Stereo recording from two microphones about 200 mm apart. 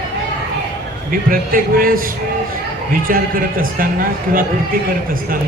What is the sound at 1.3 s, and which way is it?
Speech, 45° right (ahead or behind).